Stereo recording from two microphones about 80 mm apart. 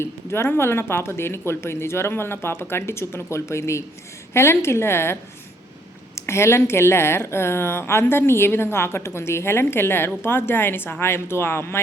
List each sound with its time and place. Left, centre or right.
0.0 s speech: left
6.1 s a woman's voice: left